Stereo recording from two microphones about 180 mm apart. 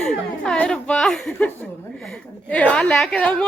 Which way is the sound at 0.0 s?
5° left (ahead or behind).